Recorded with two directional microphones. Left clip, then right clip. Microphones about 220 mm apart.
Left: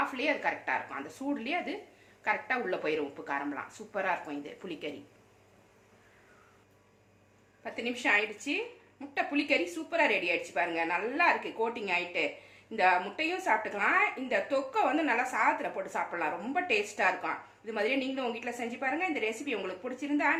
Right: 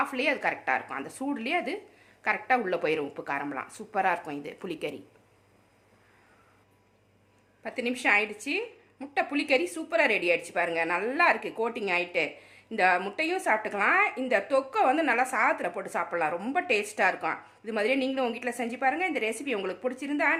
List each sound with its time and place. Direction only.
0.0 s speech: 50° right (ahead or behind)
7.6 s speech: 50° right (ahead or behind)